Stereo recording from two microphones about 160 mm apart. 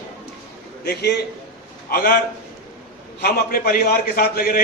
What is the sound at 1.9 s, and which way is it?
Speech, 65° left (ahead or behind).